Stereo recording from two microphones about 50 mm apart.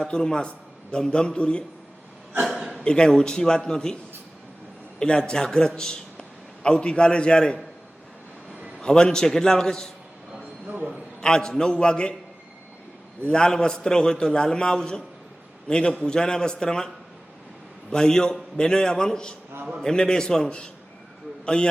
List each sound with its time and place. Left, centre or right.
0.0 s a man's voice: centre
2.8 s a man's voice: centre
4.9 s a man's voice: centre
8.8 s a man's voice: centre
10.7 s a man's voice: right
11.2 s a man's voice: centre
13.2 s a man's voice: centre
17.9 s a man's voice: centre